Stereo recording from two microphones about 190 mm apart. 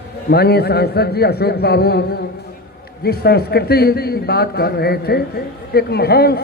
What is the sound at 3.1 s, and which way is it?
A man's voice, 55° left (ahead or behind).